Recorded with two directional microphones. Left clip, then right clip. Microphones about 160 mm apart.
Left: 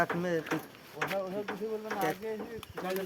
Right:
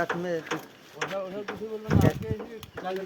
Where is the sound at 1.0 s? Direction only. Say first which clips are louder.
Right 2 dB; 85° right.